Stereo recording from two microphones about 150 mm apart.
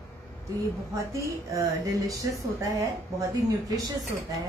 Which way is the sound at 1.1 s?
20° right (ahead or behind).